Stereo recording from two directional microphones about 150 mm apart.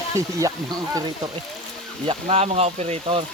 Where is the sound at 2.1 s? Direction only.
40° right (ahead or behind).